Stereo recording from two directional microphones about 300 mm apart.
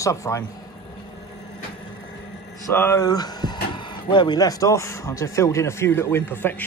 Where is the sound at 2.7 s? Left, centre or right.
Centre.